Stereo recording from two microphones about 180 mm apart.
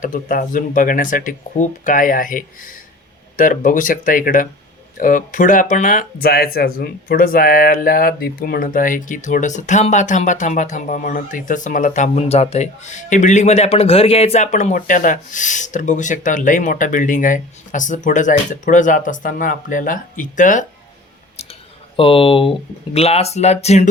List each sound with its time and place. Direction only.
0.0 s speech: 50° left (ahead or behind)
21.9 s speech: 30° left (ahead or behind)